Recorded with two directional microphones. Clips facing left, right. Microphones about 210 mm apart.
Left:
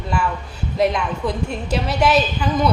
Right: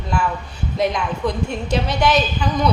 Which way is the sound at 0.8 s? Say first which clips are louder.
Left 1 dB; centre (ahead or behind).